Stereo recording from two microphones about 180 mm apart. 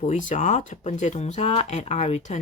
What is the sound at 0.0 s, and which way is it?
A woman's voice, 40° left (ahead or behind).